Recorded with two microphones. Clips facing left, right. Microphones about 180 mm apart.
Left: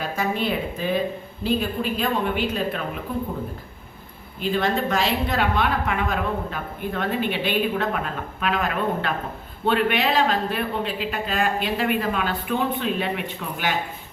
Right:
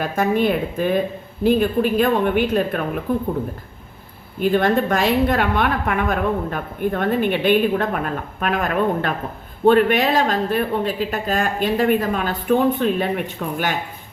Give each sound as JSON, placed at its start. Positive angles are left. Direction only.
{"t": 0.0, "sound": "a woman's voice", "side_deg": -55}
{"t": 4.4, "sound": "a woman's voice", "side_deg": -55}